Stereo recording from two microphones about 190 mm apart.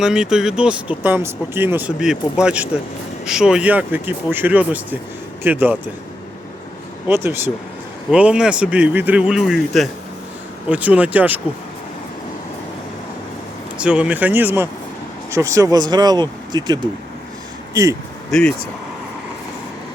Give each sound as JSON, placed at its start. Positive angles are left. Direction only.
{"t": 0.0, "sound": "speech", "side_deg": -5}
{"t": 7.1, "sound": "speech", "side_deg": -10}
{"t": 13.7, "sound": "speech", "side_deg": -5}
{"t": 18.3, "sound": "speech", "side_deg": 5}